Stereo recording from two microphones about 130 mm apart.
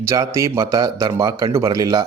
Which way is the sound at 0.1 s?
25° right (ahead or behind).